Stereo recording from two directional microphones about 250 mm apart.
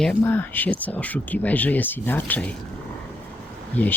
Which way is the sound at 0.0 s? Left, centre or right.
Centre.